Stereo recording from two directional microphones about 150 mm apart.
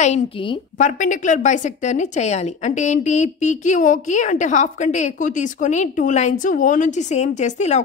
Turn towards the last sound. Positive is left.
turn(degrees=50)  # may be behind; listen again after turning